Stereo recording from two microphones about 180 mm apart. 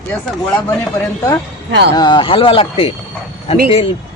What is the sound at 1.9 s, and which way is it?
Speech, 25° left (ahead or behind).